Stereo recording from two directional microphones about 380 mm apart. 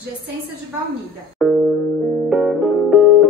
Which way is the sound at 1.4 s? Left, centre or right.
Centre.